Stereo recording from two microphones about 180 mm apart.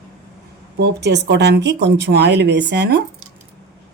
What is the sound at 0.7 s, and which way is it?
Speech, 70° right (ahead or behind).